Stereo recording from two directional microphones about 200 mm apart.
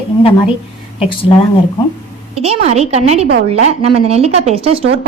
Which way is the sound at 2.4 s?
30° right (ahead or behind).